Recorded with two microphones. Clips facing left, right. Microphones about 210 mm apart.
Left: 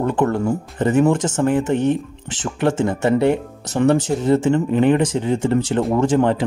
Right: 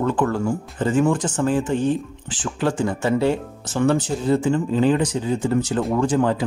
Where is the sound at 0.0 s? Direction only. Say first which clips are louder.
Left 2 dB; 20° left (ahead or behind).